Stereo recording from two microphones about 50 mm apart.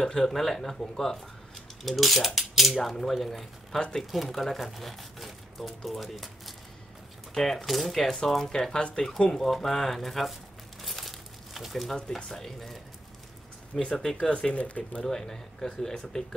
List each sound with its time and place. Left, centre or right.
0.0 s cutlery: centre
3.9 s speech: centre
7.3 s cutlery: centre
8.1 s speech: centre
9.3 s cutlery: centre
10.8 s crumpling: centre
12.4 s cutlery: centre
13.8 s cutlery: centre
14.2 s speech: centre
14.5 s speech: left
15.0 s speech: centre